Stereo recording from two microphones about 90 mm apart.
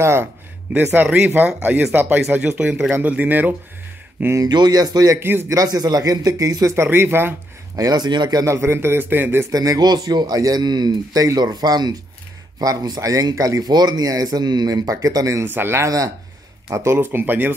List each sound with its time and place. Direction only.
0.0 s a man's voice: 30° right (ahead or behind)
4.4 s speech: 50° right (ahead or behind)
5.2 s a man's voice: 25° right (ahead or behind)
5.6 s speech: 45° right (ahead or behind); by 7.3 s 25° right (ahead or behind)
7.7 s speech: 45° right (ahead or behind)
8.4 s a man's voice: 30° right (ahead or behind)
9.5 s speech: 45° right (ahead or behind)
15.4 s a man's voice: 25° right (ahead or behind)